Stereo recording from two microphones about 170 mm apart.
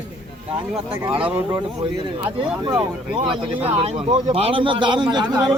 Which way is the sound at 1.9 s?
25° right (ahead or behind).